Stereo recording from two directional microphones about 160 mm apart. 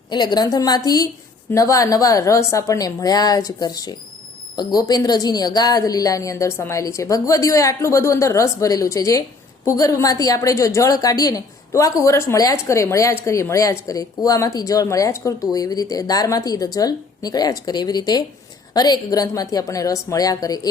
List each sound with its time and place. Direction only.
0.1 s a woman's voice: 25° left (ahead or behind)